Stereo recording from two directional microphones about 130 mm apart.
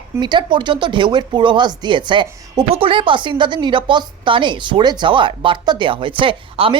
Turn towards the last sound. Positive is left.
turn(degrees=-40)  # may be behind; listen again after turning